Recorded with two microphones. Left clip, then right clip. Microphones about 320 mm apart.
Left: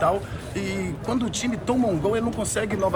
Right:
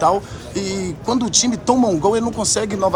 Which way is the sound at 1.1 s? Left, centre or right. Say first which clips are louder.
Right 9 dB; centre.